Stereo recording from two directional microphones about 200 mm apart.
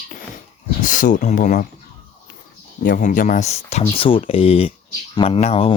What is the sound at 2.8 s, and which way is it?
Speech, 40° left (ahead or behind).